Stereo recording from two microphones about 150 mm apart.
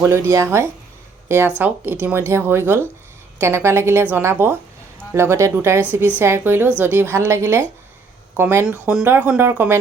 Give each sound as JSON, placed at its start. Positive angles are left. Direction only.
{"t": 0.0, "sound": "speech", "side_deg": -20}